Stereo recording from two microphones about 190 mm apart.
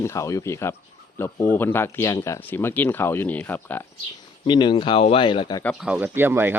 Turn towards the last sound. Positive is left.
turn(degrees=-10)  # may be behind; listen again after turning